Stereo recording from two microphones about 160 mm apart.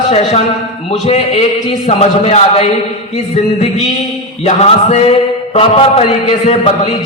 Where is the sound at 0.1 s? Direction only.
40° left (ahead or behind).